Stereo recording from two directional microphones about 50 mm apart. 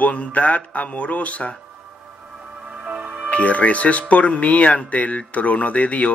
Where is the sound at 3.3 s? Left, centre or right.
Left.